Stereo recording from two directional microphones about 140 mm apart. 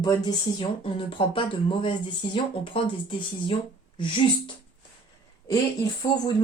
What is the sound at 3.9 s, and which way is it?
Speech, 35° left (ahead or behind).